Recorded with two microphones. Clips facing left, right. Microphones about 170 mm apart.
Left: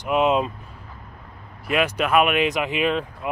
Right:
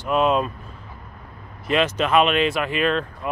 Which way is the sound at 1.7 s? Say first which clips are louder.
Right 1 dB; 10° left (ahead or behind).